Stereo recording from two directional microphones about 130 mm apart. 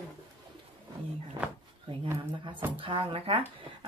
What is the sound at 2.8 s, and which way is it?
Speech, 40° right (ahead or behind).